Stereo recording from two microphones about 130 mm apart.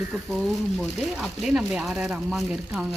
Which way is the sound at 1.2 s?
5° right (ahead or behind).